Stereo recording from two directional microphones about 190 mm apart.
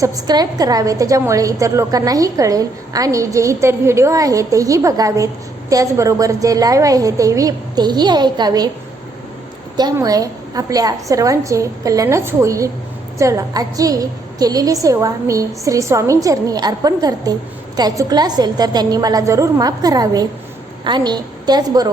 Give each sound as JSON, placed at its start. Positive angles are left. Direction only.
{"t": 0.0, "sound": "a woman's voice", "side_deg": -20}
{"t": 9.7, "sound": "a woman's voice", "side_deg": -20}